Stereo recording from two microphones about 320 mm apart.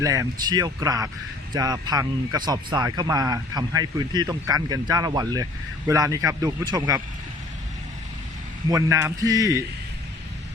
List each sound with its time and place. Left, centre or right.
0.0 s speech: centre
8.7 s speech: centre